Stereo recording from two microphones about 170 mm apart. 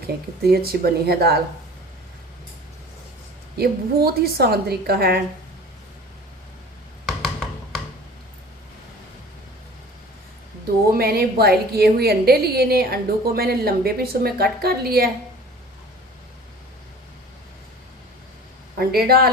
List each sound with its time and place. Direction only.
0.4 s a woman's voice: 65° right (ahead or behind)
3.6 s a woman's voice: 65° right (ahead or behind)
10.9 s a woman's voice: 65° right (ahead or behind)
18.8 s a woman's voice: 65° right (ahead or behind)